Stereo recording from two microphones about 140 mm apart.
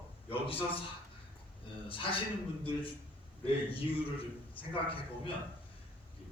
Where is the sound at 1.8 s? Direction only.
40° left (ahead or behind).